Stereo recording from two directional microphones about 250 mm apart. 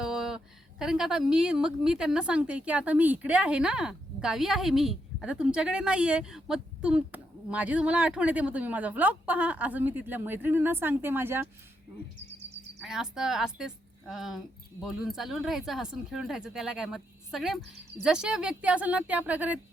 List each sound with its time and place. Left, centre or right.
0.0 s a woman's voice: centre
12.8 s a woman's voice: centre